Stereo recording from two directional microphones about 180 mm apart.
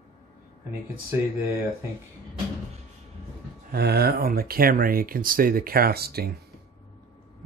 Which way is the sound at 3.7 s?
65° right (ahead or behind).